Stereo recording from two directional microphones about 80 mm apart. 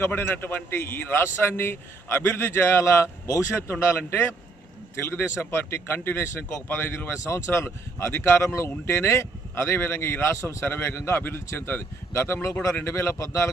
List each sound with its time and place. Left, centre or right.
0.1 s speech: left